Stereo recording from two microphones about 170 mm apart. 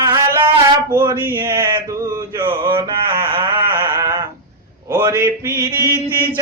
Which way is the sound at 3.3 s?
30° right (ahead or behind).